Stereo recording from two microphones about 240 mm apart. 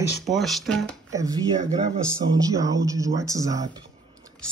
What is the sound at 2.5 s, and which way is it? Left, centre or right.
Speech, centre.